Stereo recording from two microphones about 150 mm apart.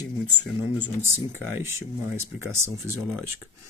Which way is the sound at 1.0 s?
15° right (ahead or behind).